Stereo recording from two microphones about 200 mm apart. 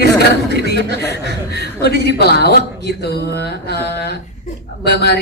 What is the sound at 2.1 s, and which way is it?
Speech, 55° left (ahead or behind).